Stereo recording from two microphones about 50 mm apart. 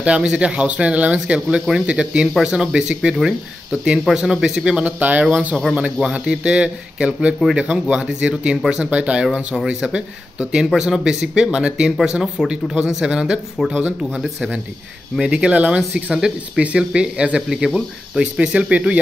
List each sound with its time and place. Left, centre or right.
0.0 s speech: right
4.7 s speech: right
6.0 s speech: centre